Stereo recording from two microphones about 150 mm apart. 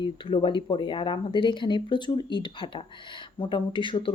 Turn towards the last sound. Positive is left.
turn(degrees=35)  # may be behind; listen again after turning